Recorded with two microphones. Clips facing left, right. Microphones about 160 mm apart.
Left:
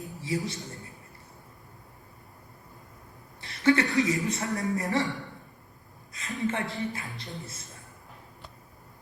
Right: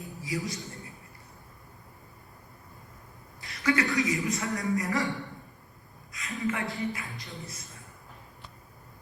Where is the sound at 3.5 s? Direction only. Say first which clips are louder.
Left 4 dB; 30° left (ahead or behind).